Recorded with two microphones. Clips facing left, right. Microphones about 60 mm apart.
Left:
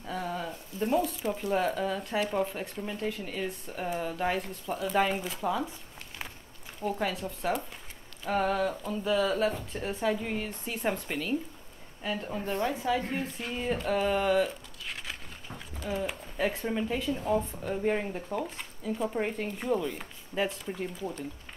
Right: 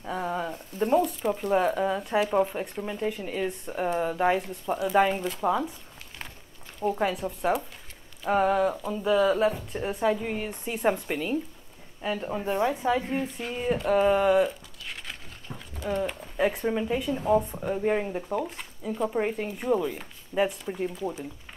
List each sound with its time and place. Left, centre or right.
0.0 s a sound: right
0.5 s a sound: right
0.9 s speech: centre
1.7 s a woman's voice: centre
2.0 s a woman's voice: centre; by 4.4 s right
4.4 s speech: centre
5.4 s speech: centre
6.8 s a woman's voice: centre
13.3 s a woman's voice: centre
14.9 s a sound: centre
16.3 s a woman's voice: centre